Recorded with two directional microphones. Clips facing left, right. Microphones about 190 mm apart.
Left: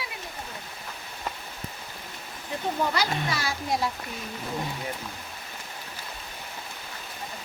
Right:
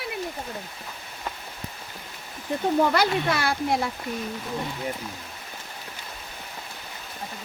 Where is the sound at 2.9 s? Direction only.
60° right (ahead or behind).